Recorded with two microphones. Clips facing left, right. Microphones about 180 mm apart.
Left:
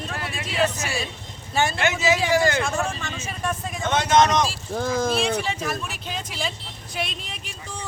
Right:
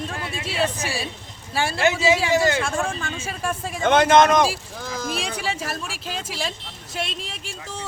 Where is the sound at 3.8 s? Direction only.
55° right (ahead or behind).